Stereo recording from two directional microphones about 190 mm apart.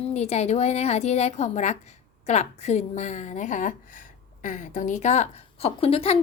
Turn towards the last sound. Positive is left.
turn(degrees=30)  # may be behind; listen again after turning